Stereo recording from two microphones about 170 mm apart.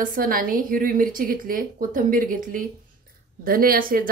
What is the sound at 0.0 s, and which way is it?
Speech, 55° right (ahead or behind).